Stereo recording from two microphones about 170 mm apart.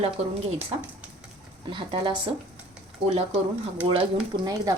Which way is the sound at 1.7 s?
30° right (ahead or behind).